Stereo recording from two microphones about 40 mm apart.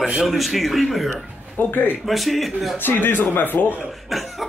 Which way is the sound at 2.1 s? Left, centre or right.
Centre.